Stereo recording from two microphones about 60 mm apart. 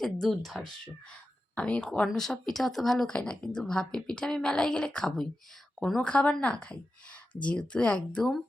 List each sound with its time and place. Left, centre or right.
0.0 s speech: centre
1.5 s speech: centre
2.1 s a woman's voice: centre
6.1 s a woman's voice: centre